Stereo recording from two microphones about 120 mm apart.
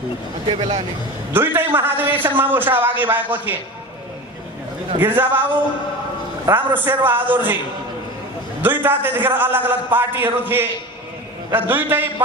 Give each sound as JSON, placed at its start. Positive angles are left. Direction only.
{"t": 0.5, "sound": "speech", "side_deg": -55}
{"t": 1.3, "sound": "a man's voice", "side_deg": -20}
{"t": 4.9, "sound": "a man's voice", "side_deg": -20}
{"t": 6.4, "sound": "a man's voice", "side_deg": -15}
{"t": 8.5, "sound": "a man's voice", "side_deg": -15}